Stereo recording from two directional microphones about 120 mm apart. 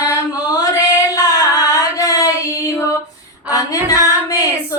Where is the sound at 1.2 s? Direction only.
30° left (ahead or behind).